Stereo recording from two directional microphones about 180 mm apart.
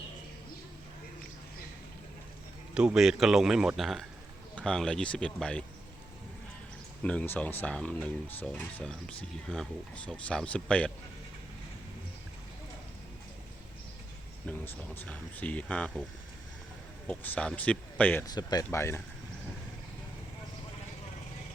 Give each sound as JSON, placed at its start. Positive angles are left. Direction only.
{"t": 2.7, "sound": "speech", "side_deg": -5}
{"t": 7.0, "sound": "speech", "side_deg": 5}
{"t": 14.4, "sound": "speech", "side_deg": 5}
{"t": 17.1, "sound": "speech", "side_deg": 5}
{"t": 18.3, "sound": "speech", "side_deg": 20}